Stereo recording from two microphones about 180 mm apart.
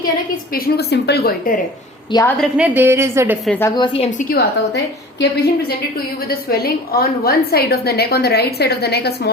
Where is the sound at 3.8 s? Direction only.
30° left (ahead or behind).